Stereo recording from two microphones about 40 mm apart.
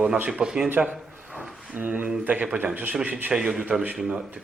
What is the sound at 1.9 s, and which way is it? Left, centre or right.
Speech, right.